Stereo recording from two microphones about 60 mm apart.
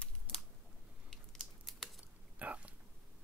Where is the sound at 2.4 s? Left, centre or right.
Right.